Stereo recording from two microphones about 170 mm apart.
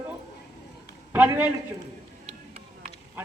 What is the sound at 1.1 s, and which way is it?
Speech, 10° right (ahead or behind).